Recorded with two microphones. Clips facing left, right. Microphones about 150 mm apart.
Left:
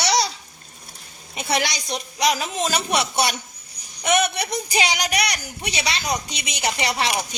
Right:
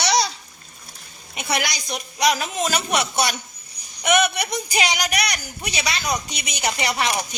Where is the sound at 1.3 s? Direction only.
30° left (ahead or behind).